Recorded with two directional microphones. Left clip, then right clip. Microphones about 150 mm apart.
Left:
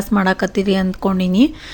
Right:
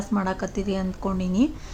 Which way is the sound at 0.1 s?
30° left (ahead or behind).